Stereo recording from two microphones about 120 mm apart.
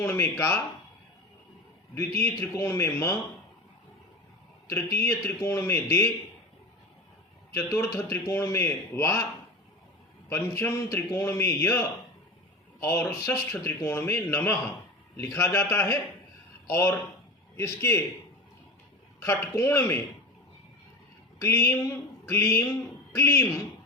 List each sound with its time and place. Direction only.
0.0 s speech: 15° left (ahead or behind)
2.0 s a man's voice: 20° left (ahead or behind)
4.7 s a man's voice: 25° left (ahead or behind)
7.5 s a man's voice: 20° left (ahead or behind)
10.2 s a man's voice: 20° left (ahead or behind)
19.2 s a man's voice: 20° left (ahead or behind)
21.4 s a man's voice: 25° left (ahead or behind)
23.1 s a man's voice: 20° left (ahead or behind)